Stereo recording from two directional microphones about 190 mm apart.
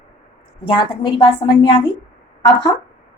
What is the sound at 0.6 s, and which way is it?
A woman's voice, 25° left (ahead or behind).